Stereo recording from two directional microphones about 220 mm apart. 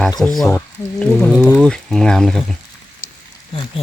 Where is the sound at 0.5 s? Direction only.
5° left (ahead or behind).